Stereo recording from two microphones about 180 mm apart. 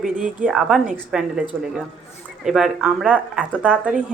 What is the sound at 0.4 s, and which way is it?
A woman's voice, 5° right (ahead or behind).